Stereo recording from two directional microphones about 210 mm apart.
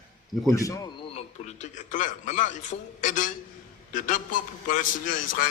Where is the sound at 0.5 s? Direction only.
15° left (ahead or behind).